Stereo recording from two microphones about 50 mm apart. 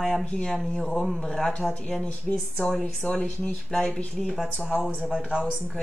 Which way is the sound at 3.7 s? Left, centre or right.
Centre.